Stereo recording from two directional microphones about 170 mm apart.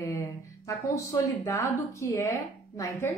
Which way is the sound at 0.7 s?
20° left (ahead or behind).